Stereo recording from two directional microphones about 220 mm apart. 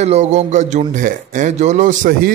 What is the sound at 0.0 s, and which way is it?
A man's voice, 30° right (ahead or behind).